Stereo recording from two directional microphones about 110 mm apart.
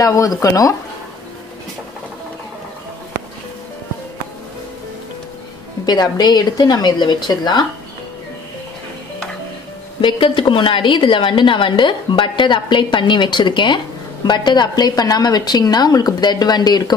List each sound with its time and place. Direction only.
0.0 s a woman's voice: 30° left (ahead or behind)
5.9 s a woman's voice: 40° left (ahead or behind)
10.0 s a woman's voice: 50° left (ahead or behind)